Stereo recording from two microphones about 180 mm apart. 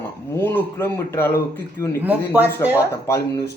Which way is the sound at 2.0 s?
10° right (ahead or behind).